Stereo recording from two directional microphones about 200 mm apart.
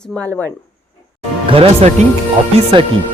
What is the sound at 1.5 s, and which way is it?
Speech, 30° right (ahead or behind).